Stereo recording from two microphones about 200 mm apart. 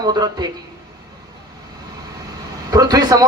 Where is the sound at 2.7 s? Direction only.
20° right (ahead or behind).